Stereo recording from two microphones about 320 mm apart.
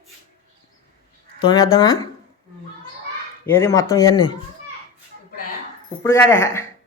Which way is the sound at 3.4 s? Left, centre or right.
Centre.